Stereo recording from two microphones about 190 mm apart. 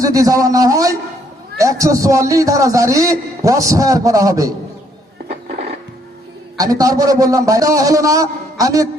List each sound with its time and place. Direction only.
0.0 s a man's voice: 20° right (ahead or behind)
6.6 s a man's voice: 20° right (ahead or behind)